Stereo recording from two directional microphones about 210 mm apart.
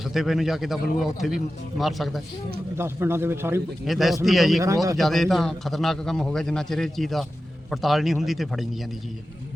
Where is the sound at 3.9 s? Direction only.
Centre (ahead or behind).